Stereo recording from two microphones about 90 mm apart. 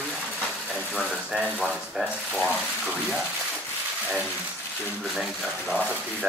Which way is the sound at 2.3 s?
10° left (ahead or behind).